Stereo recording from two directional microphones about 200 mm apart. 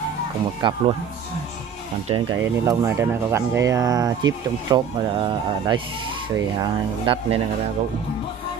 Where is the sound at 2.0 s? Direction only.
25° right (ahead or behind).